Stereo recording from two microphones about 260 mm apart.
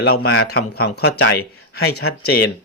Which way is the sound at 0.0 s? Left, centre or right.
Left.